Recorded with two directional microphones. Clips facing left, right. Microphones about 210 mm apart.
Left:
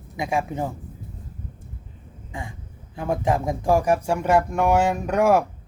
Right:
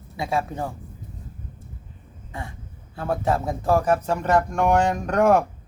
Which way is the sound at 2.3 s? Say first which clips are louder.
Left 1 dB; 15° left (ahead or behind).